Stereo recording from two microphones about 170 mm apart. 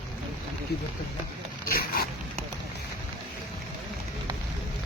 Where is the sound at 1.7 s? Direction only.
60° left (ahead or behind).